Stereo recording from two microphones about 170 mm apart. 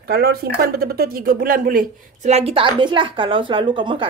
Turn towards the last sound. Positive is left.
turn(degrees=-30)  # may be behind; listen again after turning